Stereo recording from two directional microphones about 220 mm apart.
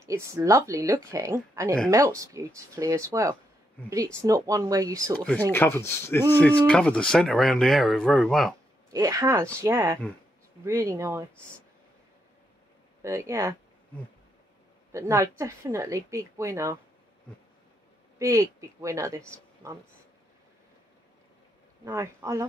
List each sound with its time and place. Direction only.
0.0 s speech: 15° right (ahead or behind)
5.1 s speech: 5° left (ahead or behind)
8.9 s speech: 15° right (ahead or behind)
13.0 s speech: 15° right (ahead or behind)
14.9 s speech: 15° right (ahead or behind)
18.2 s speech: 15° right (ahead or behind)
21.8 s speech: 15° right (ahead or behind)